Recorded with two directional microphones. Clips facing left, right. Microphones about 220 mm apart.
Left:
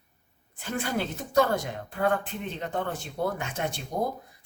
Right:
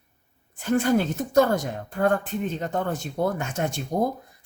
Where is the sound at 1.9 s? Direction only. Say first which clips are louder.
Right 4 dB; 45° right (ahead or behind).